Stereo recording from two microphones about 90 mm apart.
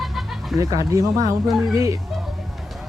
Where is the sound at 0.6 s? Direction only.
40° right (ahead or behind).